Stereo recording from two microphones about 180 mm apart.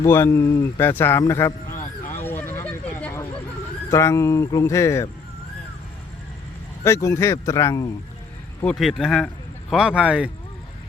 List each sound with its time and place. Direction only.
0.0 s speech: 15° left (ahead or behind)
2.2 s a sound: 10° left (ahead or behind)
3.8 s speech: 15° left (ahead or behind)
6.8 s speech: 15° left (ahead or behind)
8.6 s speech: centre (ahead or behind)